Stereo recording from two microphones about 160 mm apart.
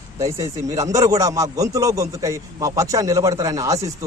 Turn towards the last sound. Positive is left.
turn(degrees=-20)  # may be behind; listen again after turning